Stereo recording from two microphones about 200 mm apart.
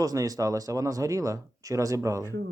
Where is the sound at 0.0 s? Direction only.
15° right (ahead or behind).